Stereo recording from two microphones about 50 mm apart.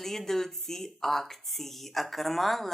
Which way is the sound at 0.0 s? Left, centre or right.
Centre.